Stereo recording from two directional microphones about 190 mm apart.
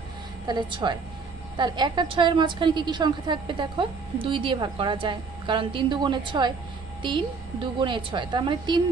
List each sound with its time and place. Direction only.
0.5 s a woman's voice: 25° right (ahead or behind)